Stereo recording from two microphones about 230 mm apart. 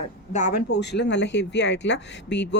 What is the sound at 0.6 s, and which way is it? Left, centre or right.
Speech, left.